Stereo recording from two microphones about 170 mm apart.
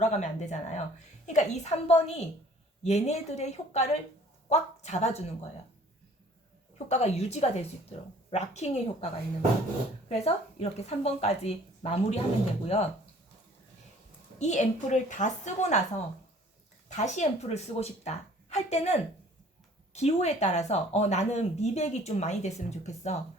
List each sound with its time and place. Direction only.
0.0 s a woman's voice: 40° left (ahead or behind)
6.7 s speech: 40° left (ahead or behind)
10.1 s speech: 35° left (ahead or behind)
14.3 s a woman's voice: 40° left (ahead or behind)
16.9 s speech: 45° left (ahead or behind)